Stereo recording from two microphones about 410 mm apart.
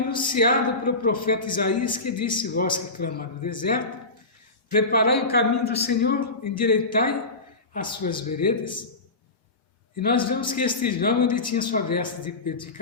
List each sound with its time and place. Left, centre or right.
0.1 s a man's voice: centre
4.9 s a man's voice: left
10.0 s a man's voice: centre